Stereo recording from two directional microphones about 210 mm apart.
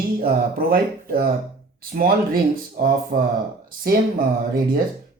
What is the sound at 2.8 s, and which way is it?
Speech, 45° right (ahead or behind).